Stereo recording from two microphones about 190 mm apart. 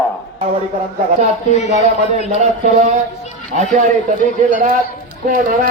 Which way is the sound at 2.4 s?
35° right (ahead or behind).